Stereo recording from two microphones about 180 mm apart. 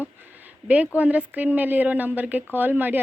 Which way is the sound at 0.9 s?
10° right (ahead or behind).